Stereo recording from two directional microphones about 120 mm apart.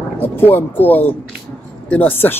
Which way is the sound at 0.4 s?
15° left (ahead or behind).